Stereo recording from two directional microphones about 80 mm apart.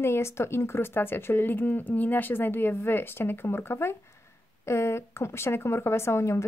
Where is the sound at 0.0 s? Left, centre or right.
Left.